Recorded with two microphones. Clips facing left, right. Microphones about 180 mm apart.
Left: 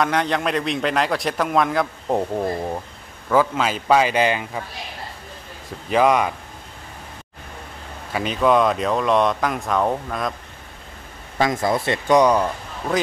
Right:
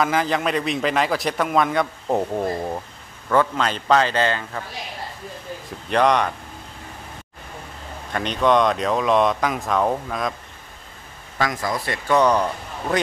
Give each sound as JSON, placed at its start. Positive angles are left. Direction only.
{"t": 0.0, "sound": "a man's voice", "side_deg": 0}
{"t": 5.9, "sound": "a man's voice", "side_deg": 5}
{"t": 8.1, "sound": "a man's voice", "side_deg": 5}
{"t": 11.3, "sound": "speech", "side_deg": 25}
{"t": 12.2, "sound": "a man's voice", "side_deg": 10}
{"t": 12.9, "sound": "a man's voice", "side_deg": 0}